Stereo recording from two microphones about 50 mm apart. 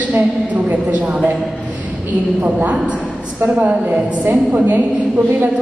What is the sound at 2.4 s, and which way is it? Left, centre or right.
A woman's voice, right.